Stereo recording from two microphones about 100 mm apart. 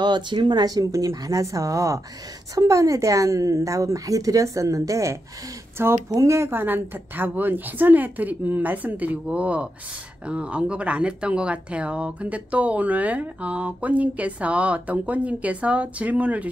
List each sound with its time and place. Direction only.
0.0 s a woman's voice: 50° right (ahead or behind); by 16.4 s 15° right (ahead or behind)